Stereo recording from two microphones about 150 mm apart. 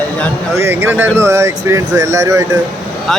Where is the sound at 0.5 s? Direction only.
15° right (ahead or behind).